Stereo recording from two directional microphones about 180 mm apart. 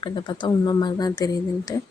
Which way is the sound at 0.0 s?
25° left (ahead or behind).